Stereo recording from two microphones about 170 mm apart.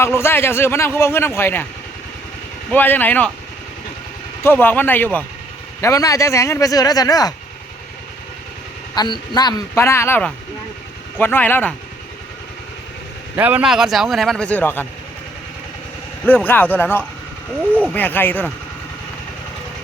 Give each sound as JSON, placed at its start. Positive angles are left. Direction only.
{"t": 0.0, "sound": "speech", "side_deg": 15}
{"t": 2.7, "sound": "speech", "side_deg": 10}
{"t": 4.4, "sound": "speech", "side_deg": 10}
{"t": 9.0, "sound": "speech", "side_deg": 25}
{"t": 13.3, "sound": "speech", "side_deg": -10}
{"t": 16.2, "sound": "speech", "side_deg": 10}